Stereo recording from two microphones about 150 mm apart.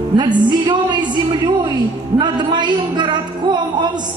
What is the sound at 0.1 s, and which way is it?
A man's voice, 30° right (ahead or behind).